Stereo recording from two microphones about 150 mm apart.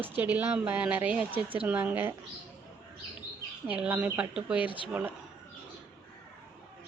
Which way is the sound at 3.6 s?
10° right (ahead or behind).